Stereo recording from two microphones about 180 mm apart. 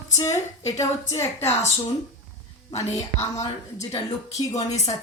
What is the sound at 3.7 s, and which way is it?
A woman's voice, 35° left (ahead or behind).